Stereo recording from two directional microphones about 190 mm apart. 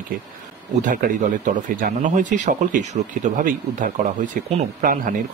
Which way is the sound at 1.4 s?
45° right (ahead or behind).